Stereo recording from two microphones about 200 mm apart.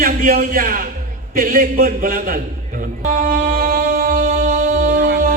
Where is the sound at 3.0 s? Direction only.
45° right (ahead or behind).